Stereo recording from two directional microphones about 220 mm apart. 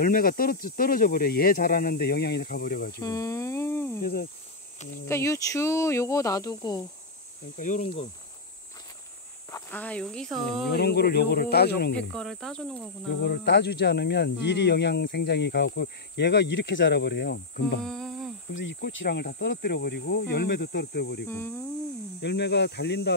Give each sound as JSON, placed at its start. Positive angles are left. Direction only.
{"t": 0.0, "sound": "speech", "side_deg": 40}
{"t": 3.0, "sound": "a sound", "side_deg": 15}
{"t": 4.0, "sound": "speech", "side_deg": 45}
{"t": 5.0, "sound": "speech", "side_deg": 10}
{"t": 7.5, "sound": "speech", "side_deg": 35}
{"t": 9.5, "sound": "speech", "side_deg": 10}
{"t": 10.7, "sound": "speech", "side_deg": 45}
{"t": 12.0, "sound": "cricket", "side_deg": 5}
{"t": 13.2, "sound": "speech", "side_deg": 50}
{"t": 17.8, "sound": "humming", "side_deg": 0}
{"t": 18.5, "sound": "speech", "side_deg": 60}
{"t": 21.3, "sound": "speech", "side_deg": 10}
{"t": 22.2, "sound": "speech", "side_deg": 50}